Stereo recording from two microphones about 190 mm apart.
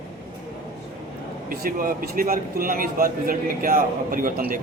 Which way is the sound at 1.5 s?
50° right (ahead or behind).